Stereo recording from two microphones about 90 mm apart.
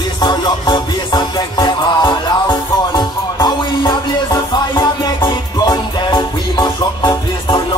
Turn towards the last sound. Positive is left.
turn(degrees=50)  # may be behind; listen again after turning